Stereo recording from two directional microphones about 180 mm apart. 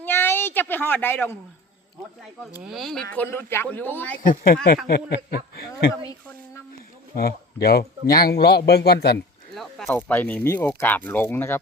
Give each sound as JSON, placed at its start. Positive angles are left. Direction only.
{"t": 0.0, "sound": "a sound", "side_deg": 10}
{"t": 2.6, "sound": "speech", "side_deg": 0}
{"t": 4.2, "sound": "a man's voice", "side_deg": 50}
{"t": 7.2, "sound": "a man's voice", "side_deg": 60}
{"t": 9.6, "sound": "speech", "side_deg": 0}